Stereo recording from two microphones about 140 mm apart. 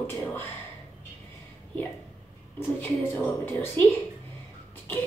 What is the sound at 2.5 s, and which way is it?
A woman's voice, 15° left (ahead or behind).